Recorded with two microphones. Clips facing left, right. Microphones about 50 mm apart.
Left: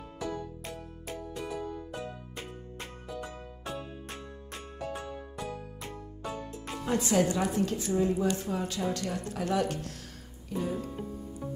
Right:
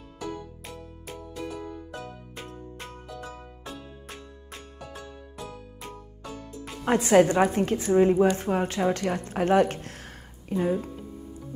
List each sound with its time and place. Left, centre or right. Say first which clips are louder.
2.3 s music: right 2 dB; centre
3.6 s music: left 3 dB; left
6.9 s speech: right 8 dB; right